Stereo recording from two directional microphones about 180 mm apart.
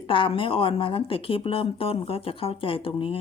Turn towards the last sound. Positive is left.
turn(degrees=30)  # may be behind; listen again after turning